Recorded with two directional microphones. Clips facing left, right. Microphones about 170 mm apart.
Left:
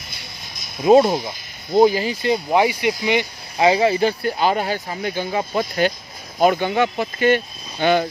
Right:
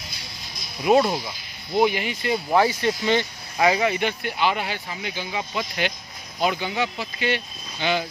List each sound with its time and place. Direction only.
0.8 s speech: 25° left (ahead or behind)
1.8 s speech: 35° left (ahead or behind)
2.3 s speech: 15° left (ahead or behind)
3.5 s speech: 30° left (ahead or behind); by 8.1 s 50° left (ahead or behind)